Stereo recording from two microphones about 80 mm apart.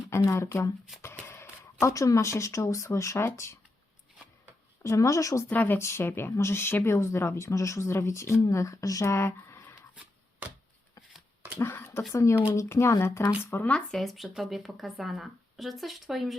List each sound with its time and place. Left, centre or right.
0.1 s speech: left
4.8 s speech: left
5.5 s a woman's voice: left
9.1 s a sound: left
12.1 s speech: left
13.9 s speech: centre